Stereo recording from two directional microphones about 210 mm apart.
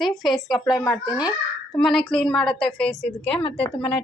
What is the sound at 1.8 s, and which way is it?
A woman's voice, centre (ahead or behind).